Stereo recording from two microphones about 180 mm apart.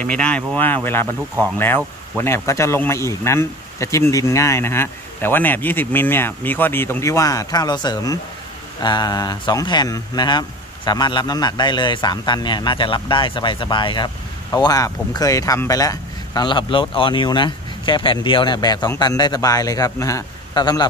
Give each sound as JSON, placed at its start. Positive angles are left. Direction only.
{"t": 0.0, "sound": "speech", "side_deg": 5}
{"t": 2.1, "sound": "a man's voice", "side_deg": 15}